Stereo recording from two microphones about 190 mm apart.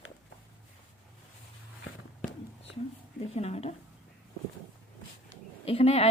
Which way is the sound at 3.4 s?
30° left (ahead or behind).